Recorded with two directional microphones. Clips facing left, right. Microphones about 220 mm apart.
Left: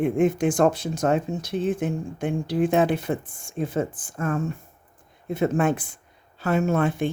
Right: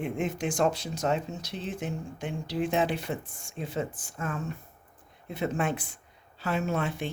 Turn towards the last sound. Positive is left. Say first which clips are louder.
# left 8 dB
turn(degrees=50)  # may be behind; listen again after turning